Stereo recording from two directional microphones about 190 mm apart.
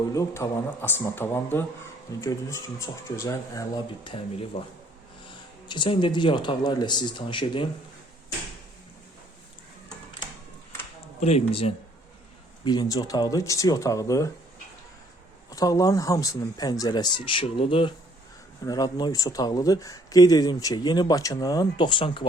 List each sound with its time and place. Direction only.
0.1 s speech: 15° left (ahead or behind)
11.2 s speech: 35° left (ahead or behind)
12.6 s speech: 20° left (ahead or behind)
15.4 s speech: 20° left (ahead or behind)